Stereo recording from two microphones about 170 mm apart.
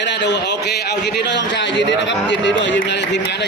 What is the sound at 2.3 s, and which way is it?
Speech, 90° left.